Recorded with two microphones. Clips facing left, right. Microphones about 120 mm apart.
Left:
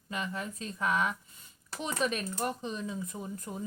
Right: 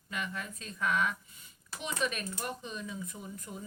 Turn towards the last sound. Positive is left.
turn(degrees=40)  # may be behind; listen again after turning